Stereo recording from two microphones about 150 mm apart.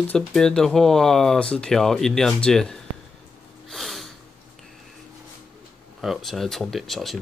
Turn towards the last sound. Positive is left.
turn(degrees=0)  # may be behind; listen again after turning